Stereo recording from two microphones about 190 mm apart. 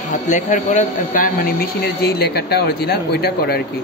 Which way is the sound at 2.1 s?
60° left (ahead or behind).